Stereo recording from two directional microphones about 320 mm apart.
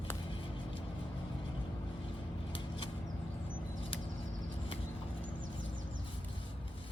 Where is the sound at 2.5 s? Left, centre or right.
Centre.